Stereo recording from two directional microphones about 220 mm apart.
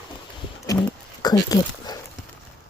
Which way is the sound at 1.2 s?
15° left (ahead or behind).